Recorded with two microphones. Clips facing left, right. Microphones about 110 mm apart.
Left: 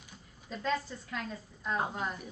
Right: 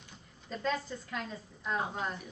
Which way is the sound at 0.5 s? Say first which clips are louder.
Even; centre (ahead or behind).